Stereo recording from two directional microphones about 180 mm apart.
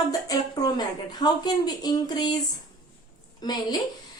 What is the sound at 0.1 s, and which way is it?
A woman's voice, 20° left (ahead or behind).